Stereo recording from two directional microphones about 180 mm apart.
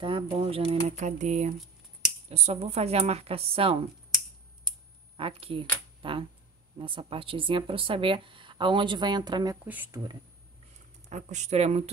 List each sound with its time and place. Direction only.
0.0 s a woman's voice: 30° right (ahead or behind)
5.1 s speech: 30° right (ahead or behind)
9.7 s speech: 10° right (ahead or behind)
11.1 s a woman's voice: 40° right (ahead or behind)